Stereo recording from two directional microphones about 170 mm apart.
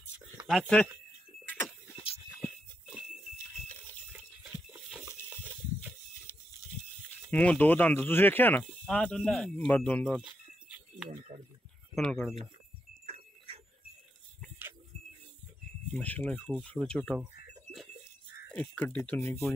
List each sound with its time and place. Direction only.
0.4 s speech: centre (ahead or behind)
1.4 s a sound: 10° left (ahead or behind)
7.2 s speech: 10° left (ahead or behind)
11.1 s speech: 40° right (ahead or behind)
11.9 s speech: 5° left (ahead or behind)
13.0 s clock: 35° right (ahead or behind)
15.9 s speech: 10° left (ahead or behind)
18.5 s speech: 10° left (ahead or behind)